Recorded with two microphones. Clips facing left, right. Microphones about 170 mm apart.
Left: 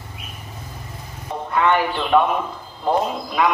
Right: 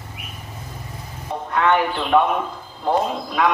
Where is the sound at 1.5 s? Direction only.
5° left (ahead or behind).